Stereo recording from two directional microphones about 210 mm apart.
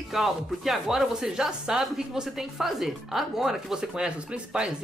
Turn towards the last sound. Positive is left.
turn(degrees=-5)  # may be behind; listen again after turning